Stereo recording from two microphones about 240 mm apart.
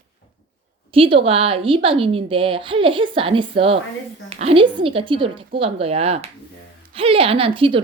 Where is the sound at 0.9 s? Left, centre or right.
Right.